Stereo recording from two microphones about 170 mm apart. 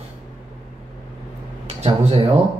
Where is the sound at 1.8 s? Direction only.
30° right (ahead or behind).